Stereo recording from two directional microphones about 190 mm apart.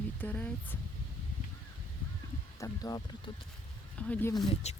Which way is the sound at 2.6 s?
20° left (ahead or behind).